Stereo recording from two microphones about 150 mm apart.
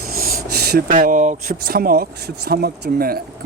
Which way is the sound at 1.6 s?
80° right.